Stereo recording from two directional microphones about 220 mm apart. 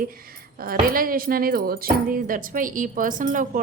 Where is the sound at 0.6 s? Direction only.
40° right (ahead or behind).